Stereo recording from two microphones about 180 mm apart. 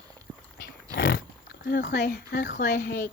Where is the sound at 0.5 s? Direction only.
60° left (ahead or behind).